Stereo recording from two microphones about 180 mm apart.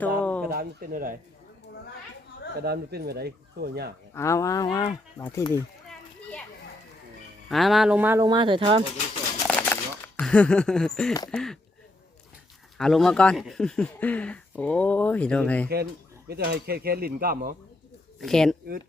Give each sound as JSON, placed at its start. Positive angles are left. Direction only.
{"t": 0.2, "sound": "a sound", "side_deg": 5}
{"t": 0.4, "sound": "speech", "side_deg": -55}
{"t": 2.6, "sound": "speech", "side_deg": -60}
{"t": 4.1, "sound": "speech", "side_deg": 15}
{"t": 7.4, "sound": "speech", "side_deg": 0}
{"t": 8.3, "sound": "speech", "side_deg": -25}
{"t": 9.5, "sound": "a sound", "side_deg": 10}
{"t": 11.3, "sound": "speech", "side_deg": 5}
{"t": 12.7, "sound": "speech", "side_deg": 0}
{"t": 16.3, "sound": "speech", "side_deg": -65}
{"t": 18.2, "sound": "speech", "side_deg": 0}